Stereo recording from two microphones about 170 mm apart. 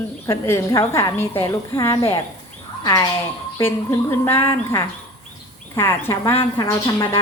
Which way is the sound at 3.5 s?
15° left (ahead or behind).